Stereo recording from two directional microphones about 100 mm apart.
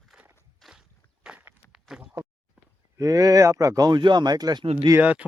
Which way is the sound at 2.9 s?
35° right (ahead or behind).